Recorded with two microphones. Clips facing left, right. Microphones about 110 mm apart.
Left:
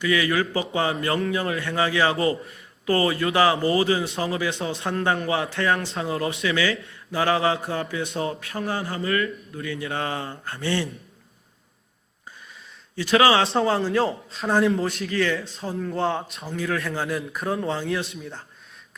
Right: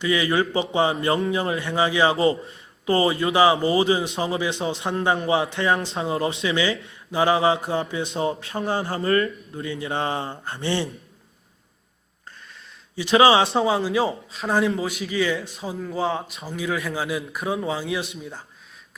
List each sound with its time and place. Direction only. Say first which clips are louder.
0.0 s a man's voice: right 1 dB; 25° right (ahead or behind)
13.0 s a man's voice: right 2 dB; 25° right (ahead or behind)
13.5 s a man's voice: even; 5° right (ahead or behind)